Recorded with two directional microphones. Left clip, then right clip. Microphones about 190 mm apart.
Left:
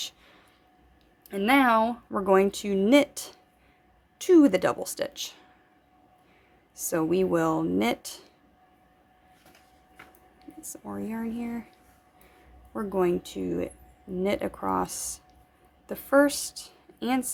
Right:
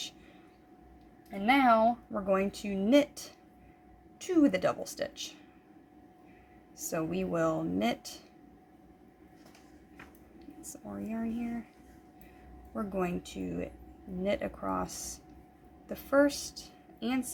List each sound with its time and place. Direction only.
1.3 s speech: 45° left (ahead or behind)
6.7 s speech: 30° left (ahead or behind)
10.6 s speech: 30° left (ahead or behind)
12.7 s a woman's voice: 25° left (ahead or behind)